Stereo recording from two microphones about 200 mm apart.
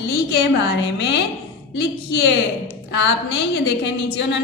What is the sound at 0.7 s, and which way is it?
Speech, 60° left (ahead or behind).